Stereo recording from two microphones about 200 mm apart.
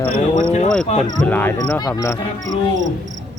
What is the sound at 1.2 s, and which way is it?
Cricket, 10° left (ahead or behind).